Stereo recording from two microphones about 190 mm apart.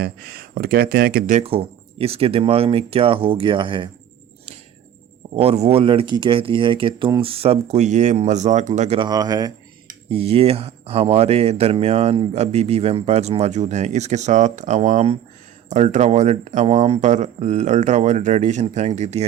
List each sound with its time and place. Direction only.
0.0 s speech: 50° right (ahead or behind)
1.4 s speech: 30° right (ahead or behind)
5.4 s speech: 35° right (ahead or behind)
9.0 s speech: 20° right (ahead or behind)
10.1 s speech: 30° right (ahead or behind)